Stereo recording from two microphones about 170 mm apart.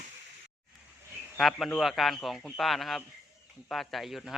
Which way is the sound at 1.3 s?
5° left (ahead or behind).